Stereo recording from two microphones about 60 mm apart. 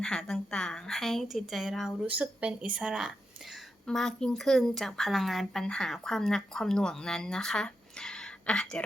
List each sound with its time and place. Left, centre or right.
0.0 s speech: centre
2.0 s speech: right
3.8 s speech: centre
5.6 s speech: centre